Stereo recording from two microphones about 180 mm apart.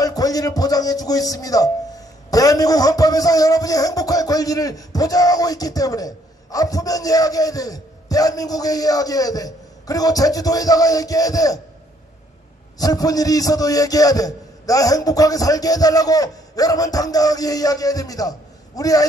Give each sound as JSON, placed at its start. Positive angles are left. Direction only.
{"t": 0.0, "sound": "a man's voice", "side_deg": 20}
{"t": 12.7, "sound": "a man's voice", "side_deg": 20}